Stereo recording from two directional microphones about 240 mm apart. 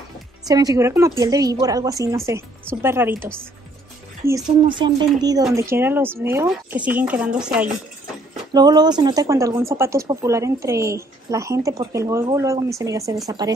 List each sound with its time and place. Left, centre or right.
0.5 s speech: centre
8.5 s speech: centre